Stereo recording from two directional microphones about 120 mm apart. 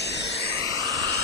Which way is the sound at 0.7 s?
30° right (ahead or behind).